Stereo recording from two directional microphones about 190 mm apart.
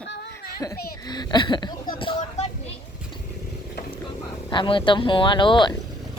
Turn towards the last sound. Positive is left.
turn(degrees=25)  # may be behind; listen again after turning